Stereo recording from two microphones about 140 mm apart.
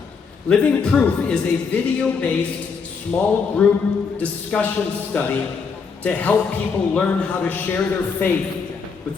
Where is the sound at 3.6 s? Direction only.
10° left (ahead or behind).